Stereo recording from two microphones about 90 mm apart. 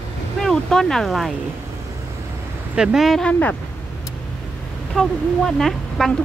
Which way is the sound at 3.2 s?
15° left (ahead or behind).